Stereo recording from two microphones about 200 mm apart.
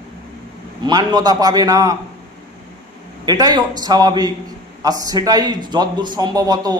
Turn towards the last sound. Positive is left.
turn(degrees=-20)  # may be behind; listen again after turning